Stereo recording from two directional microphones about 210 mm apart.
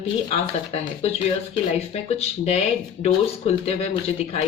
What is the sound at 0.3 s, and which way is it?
Speech, 30° left (ahead or behind).